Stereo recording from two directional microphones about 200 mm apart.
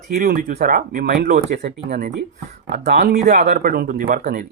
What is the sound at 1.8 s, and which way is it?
Speech, 50° right (ahead or behind).